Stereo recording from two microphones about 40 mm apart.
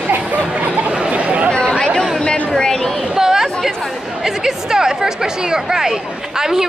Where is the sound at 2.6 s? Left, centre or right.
Centre.